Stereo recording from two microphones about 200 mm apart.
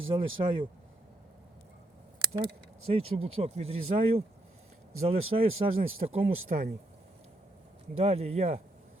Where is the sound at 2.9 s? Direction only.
30° right (ahead or behind).